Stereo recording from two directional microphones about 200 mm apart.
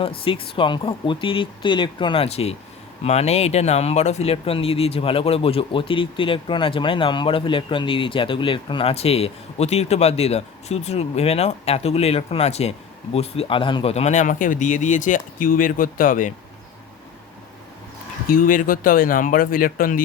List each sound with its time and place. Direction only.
0.0 s speech: 25° left (ahead or behind); by 16.3 s 40° left (ahead or behind)
18.3 s speech: 45° left (ahead or behind)